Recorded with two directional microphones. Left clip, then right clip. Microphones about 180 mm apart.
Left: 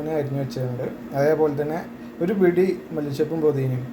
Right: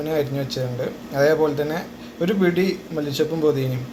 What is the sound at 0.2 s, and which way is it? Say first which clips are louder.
A man's voice: right 3 dB; 10° left (ahead or behind).